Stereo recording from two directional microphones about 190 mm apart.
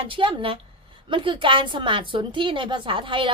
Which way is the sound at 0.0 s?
25° right (ahead or behind).